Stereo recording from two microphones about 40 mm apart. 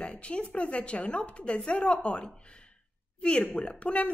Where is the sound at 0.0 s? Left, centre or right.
Left.